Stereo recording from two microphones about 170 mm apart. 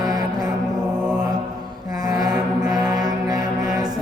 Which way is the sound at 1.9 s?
20° right (ahead or behind).